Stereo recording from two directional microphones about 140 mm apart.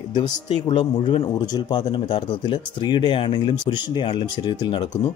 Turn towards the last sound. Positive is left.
turn(degrees=35)  # may be behind; listen again after turning